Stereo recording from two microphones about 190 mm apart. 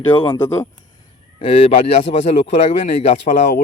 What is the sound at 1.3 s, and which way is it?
Speech, 30° left (ahead or behind).